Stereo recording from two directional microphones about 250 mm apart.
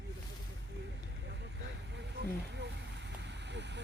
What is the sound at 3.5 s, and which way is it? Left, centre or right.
Vehicle, right.